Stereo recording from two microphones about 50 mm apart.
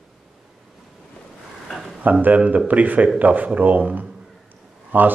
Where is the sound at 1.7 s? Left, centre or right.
Centre.